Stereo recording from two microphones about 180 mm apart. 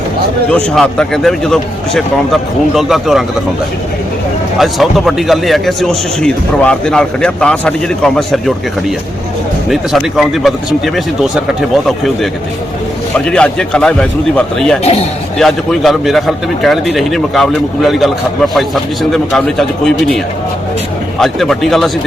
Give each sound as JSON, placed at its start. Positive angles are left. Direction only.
{"t": 0.5, "sound": "a man's voice", "side_deg": 5}
{"t": 4.5, "sound": "a man's voice", "side_deg": 0}
{"t": 9.6, "sound": "a man's voice", "side_deg": 0}